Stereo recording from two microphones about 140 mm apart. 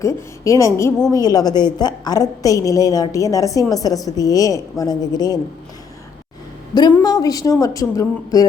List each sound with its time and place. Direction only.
0.0 s a woman's voice: 20° left (ahead or behind)
7.0 s a woman's voice: 25° left (ahead or behind)